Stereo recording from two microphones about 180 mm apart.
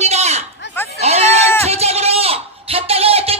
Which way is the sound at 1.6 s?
35° right (ahead or behind).